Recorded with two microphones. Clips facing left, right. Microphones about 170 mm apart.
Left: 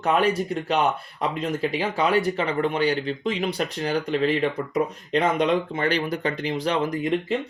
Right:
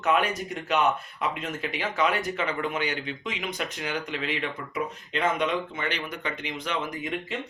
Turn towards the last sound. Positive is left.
turn(degrees=35)  # may be behind; listen again after turning